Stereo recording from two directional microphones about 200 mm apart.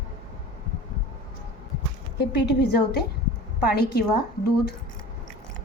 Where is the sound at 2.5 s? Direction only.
55° left (ahead or behind).